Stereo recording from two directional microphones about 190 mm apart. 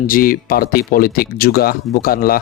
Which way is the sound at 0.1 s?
50° left (ahead or behind).